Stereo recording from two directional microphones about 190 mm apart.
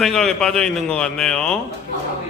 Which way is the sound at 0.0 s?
Centre (ahead or behind).